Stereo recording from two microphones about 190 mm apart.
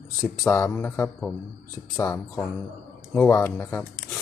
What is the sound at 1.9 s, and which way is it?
Speech, 20° left (ahead or behind).